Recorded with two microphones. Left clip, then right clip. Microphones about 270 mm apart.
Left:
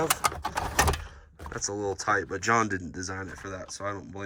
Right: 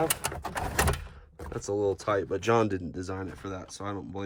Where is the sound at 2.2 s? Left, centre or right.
Centre.